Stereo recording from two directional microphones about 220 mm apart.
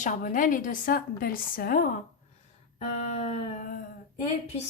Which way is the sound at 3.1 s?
30° left (ahead or behind).